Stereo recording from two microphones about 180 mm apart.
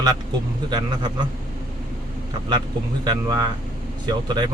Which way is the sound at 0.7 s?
25° right (ahead or behind).